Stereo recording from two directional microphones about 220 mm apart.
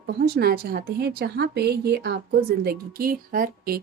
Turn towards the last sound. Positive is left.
turn(degrees=-40)  # may be behind; listen again after turning